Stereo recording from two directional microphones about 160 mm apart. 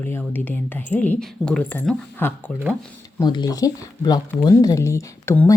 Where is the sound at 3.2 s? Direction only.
25° left (ahead or behind).